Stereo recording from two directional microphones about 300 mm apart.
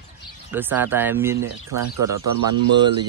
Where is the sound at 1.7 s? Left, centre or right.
Right.